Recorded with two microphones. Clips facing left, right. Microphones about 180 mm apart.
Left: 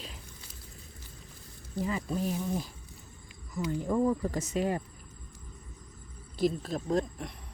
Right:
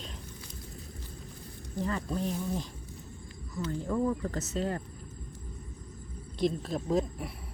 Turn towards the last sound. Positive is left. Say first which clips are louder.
# right 1 dB
turn(degrees=-5)  # may be behind; listen again after turning